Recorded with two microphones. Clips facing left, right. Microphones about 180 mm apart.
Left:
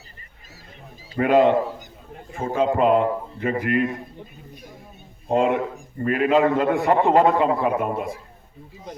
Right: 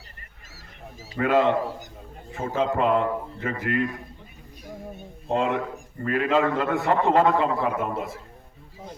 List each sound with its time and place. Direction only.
1.2 s a man's voice: 20° left (ahead or behind)
2.6 s a man's voice: 20° left (ahead or behind)
5.3 s a man's voice: 20° left (ahead or behind)